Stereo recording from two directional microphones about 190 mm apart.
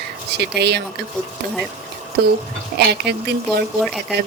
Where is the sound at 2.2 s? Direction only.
55° right (ahead or behind).